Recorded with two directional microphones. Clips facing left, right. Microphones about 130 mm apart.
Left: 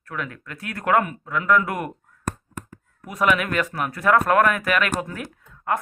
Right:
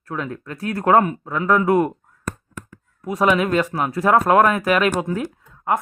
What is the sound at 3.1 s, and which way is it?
Speech, 30° right (ahead or behind).